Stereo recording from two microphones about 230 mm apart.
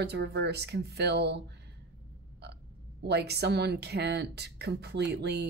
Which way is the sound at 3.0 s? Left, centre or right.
Right.